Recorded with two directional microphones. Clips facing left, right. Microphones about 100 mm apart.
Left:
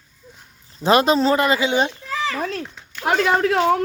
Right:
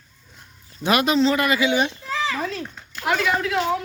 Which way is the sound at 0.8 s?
30° left (ahead or behind).